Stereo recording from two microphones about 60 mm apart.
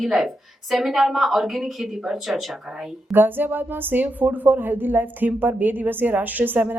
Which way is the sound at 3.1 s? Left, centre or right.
Right.